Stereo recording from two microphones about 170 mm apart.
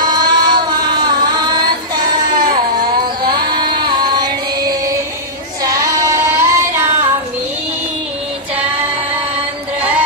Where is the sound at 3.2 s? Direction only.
25° right (ahead or behind).